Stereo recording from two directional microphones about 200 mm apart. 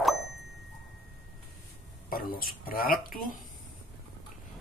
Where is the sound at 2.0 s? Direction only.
45° left (ahead or behind).